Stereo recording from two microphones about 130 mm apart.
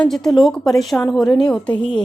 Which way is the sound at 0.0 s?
Centre (ahead or behind).